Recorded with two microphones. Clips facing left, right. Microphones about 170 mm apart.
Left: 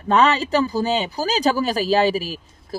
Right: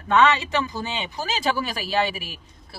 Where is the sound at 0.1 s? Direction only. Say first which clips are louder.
Left 2 dB; 35° left (ahead or behind).